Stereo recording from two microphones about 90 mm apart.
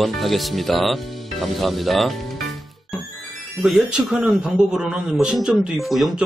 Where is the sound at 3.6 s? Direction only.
10° right (ahead or behind).